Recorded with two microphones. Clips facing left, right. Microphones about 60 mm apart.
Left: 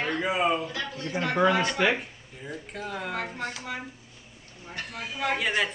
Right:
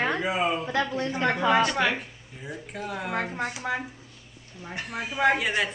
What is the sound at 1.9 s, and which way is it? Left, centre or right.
Speech, centre.